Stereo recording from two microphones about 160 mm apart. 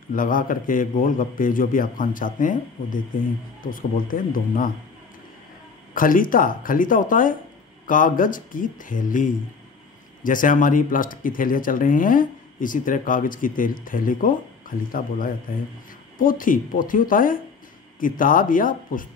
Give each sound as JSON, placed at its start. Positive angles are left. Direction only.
{"t": 0.1, "sound": "speech", "side_deg": 60}
{"t": 5.9, "sound": "speech", "side_deg": 60}